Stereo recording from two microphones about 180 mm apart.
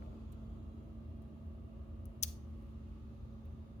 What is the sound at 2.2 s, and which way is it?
Scissors, 35° left (ahead or behind).